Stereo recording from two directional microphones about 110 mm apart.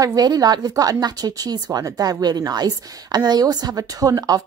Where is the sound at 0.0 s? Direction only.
35° right (ahead or behind).